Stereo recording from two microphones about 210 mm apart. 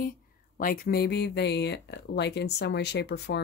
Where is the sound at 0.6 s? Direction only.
45° left (ahead or behind).